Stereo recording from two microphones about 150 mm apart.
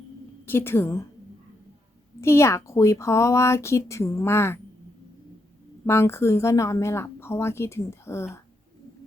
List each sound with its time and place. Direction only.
0.4 s a woman's voice: 15° left (ahead or behind)
2.2 s speech: 20° left (ahead or behind)
5.8 s a woman's voice: 15° left (ahead or behind)